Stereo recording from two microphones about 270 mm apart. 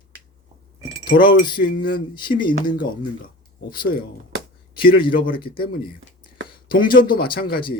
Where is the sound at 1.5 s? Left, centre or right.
Left.